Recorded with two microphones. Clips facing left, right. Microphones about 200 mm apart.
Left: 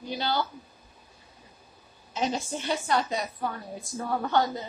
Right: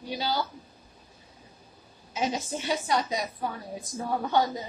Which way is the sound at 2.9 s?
15° right (ahead or behind).